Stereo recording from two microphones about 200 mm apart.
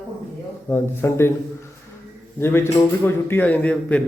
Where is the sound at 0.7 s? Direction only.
10° left (ahead or behind).